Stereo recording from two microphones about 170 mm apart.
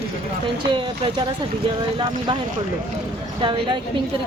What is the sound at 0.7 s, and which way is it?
Speech, 30° right (ahead or behind).